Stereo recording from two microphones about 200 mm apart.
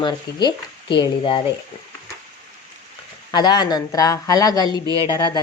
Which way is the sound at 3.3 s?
20° left (ahead or behind).